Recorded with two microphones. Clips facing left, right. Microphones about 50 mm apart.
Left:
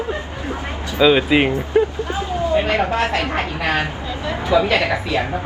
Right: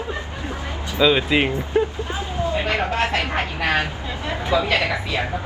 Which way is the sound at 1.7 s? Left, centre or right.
Left.